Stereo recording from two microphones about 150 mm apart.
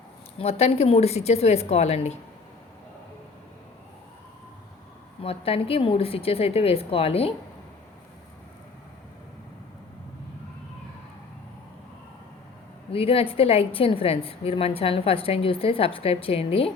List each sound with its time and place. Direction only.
0.3 s a woman's voice: 45° left (ahead or behind)
5.2 s a woman's voice: 40° left (ahead or behind)
12.9 s a woman's voice: 40° left (ahead or behind)